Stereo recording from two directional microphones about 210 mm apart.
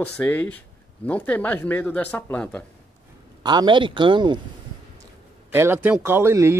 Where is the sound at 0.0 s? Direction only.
5° left (ahead or behind).